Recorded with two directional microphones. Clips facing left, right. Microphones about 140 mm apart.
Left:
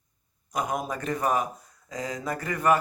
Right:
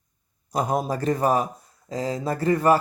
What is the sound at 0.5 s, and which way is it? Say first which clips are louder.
Speech: right 5 dB; 35° right (ahead or behind).